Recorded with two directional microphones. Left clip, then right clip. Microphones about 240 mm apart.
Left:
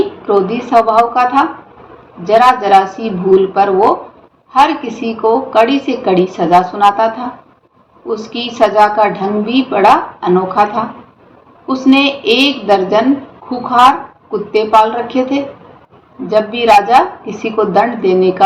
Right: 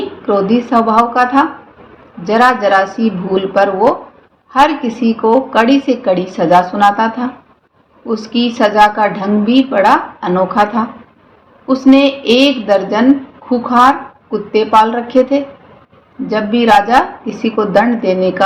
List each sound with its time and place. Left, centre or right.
0.3 s a woman's voice: right